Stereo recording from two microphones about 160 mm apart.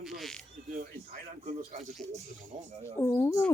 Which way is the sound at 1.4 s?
45° right (ahead or behind).